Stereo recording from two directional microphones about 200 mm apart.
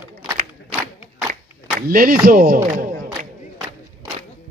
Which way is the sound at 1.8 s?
45° right (ahead or behind).